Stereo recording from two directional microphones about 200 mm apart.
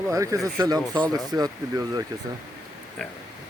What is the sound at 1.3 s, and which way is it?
Speech, 20° right (ahead or behind).